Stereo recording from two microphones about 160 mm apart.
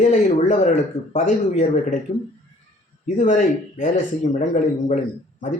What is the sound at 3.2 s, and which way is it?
Speech, 55° left (ahead or behind).